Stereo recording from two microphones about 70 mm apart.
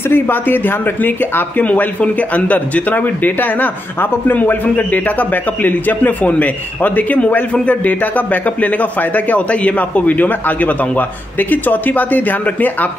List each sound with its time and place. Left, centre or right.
0.1 s speech: left